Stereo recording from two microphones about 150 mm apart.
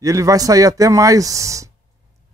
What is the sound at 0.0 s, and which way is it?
Speech, 20° right (ahead or behind).